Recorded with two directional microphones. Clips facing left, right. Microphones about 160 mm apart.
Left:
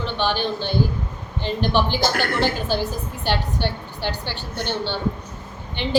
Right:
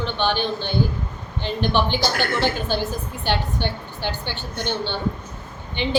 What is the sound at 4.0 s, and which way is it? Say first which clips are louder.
Speech: even; 5° left (ahead or behind).